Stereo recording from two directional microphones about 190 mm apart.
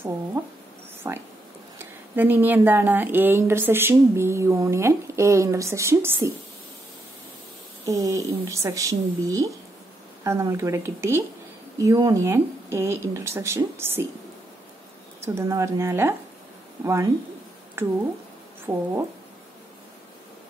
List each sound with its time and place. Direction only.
1.0 s speech: 15° right (ahead or behind)
7.8 s speech: 15° right (ahead or behind)
15.2 s speech: 15° right (ahead or behind)